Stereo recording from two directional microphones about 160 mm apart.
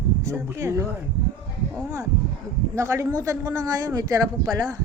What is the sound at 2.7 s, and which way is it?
Speech, 20° right (ahead or behind).